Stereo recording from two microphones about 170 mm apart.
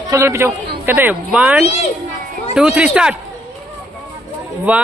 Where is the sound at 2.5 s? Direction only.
5° right (ahead or behind).